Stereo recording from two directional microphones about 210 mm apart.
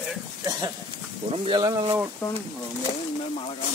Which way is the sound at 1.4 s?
20° right (ahead or behind).